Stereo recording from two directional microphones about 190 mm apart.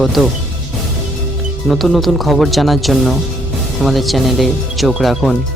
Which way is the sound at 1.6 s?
Centre (ahead or behind).